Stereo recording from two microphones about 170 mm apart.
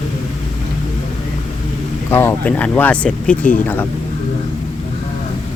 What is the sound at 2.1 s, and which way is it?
Speech, 10° left (ahead or behind).